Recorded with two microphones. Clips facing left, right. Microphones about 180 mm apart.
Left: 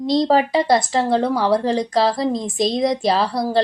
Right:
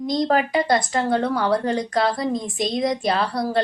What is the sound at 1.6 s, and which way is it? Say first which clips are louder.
A woman's voice: left 3 dB; 30° left (ahead or behind).